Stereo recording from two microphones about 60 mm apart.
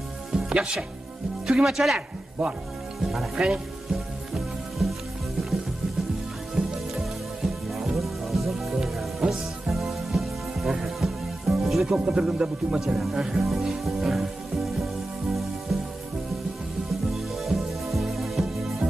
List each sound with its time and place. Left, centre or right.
0.3 s music: centre
1.5 s speech: centre
3.0 s speech: centre
3.9 s music: centre
6.5 s music: centre
12.1 s speech: centre
12.8 s music: centre
17.1 s music: centre